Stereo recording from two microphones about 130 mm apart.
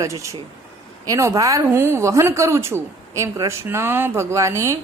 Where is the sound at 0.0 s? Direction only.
25° right (ahead or behind).